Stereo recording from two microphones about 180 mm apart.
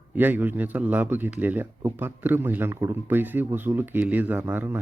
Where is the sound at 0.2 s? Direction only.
10° right (ahead or behind).